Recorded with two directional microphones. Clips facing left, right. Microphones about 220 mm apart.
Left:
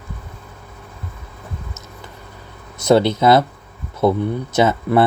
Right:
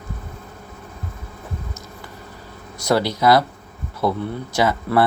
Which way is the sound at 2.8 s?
25° left (ahead or behind).